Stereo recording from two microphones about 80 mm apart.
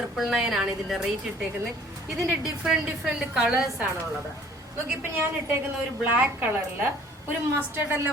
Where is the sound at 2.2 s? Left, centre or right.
Centre.